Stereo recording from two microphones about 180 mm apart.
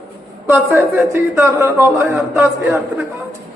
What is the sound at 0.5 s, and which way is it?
A man's voice, 15° right (ahead or behind).